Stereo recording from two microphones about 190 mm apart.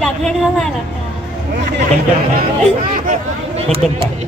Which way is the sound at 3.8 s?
Centre (ahead or behind).